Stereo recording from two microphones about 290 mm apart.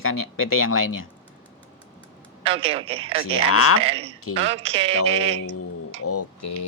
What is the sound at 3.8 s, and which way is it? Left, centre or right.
A man's voice, centre.